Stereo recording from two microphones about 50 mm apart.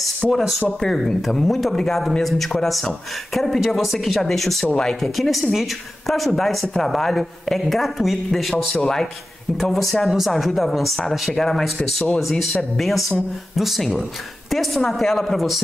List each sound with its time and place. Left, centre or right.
0.3 s speech: centre